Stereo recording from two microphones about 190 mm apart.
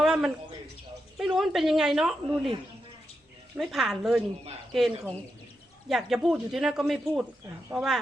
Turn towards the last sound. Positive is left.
turn(degrees=0)  # may be behind; listen again after turning